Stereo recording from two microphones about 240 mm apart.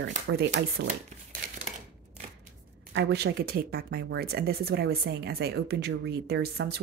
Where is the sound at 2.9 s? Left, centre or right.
Right.